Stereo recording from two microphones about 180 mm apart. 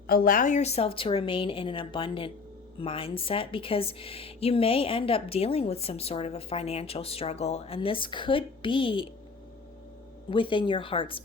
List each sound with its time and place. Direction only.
0.1 s a woman's voice: 50° left (ahead or behind); by 9.0 s 30° left (ahead or behind)
10.2 s speech: 30° left (ahead or behind)